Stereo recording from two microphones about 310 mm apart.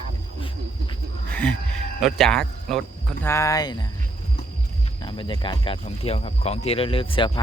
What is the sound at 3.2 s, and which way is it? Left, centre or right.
Speech, centre.